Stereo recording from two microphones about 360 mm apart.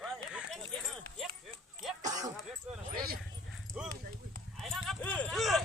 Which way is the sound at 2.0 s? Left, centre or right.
Centre.